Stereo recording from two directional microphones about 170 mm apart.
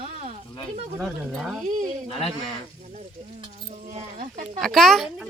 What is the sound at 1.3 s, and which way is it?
Speech, centre (ahead or behind).